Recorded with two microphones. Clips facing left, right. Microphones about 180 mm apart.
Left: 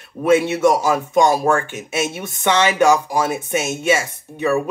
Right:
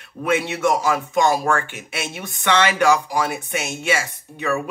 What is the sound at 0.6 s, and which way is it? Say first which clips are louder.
Speech: left 4 dB; 20° left (ahead or behind).